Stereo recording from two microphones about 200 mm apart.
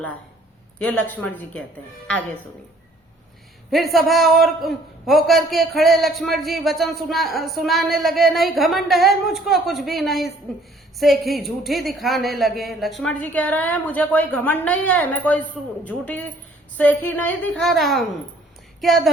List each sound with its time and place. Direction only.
0.8 s a woman's voice: 10° left (ahead or behind)
3.7 s a man's voice: centre (ahead or behind)